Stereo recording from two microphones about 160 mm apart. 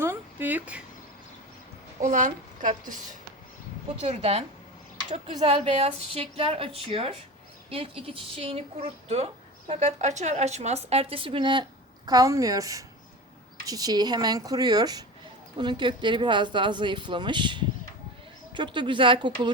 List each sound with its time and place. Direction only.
0.0 s a sound: 15° right (ahead or behind)
2.0 s a woman's voice: 50° right (ahead or behind)
4.0 s a woman's voice: 40° right (ahead or behind)
5.5 s a woman's voice: 35° right (ahead or behind)